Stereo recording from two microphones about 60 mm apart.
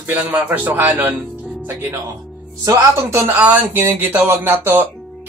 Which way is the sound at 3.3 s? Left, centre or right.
Right.